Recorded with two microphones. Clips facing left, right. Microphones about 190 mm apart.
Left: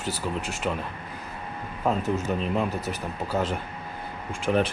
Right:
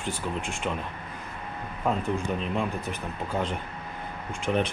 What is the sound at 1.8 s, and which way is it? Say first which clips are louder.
Speech: left 2 dB; 5° left (ahead or behind).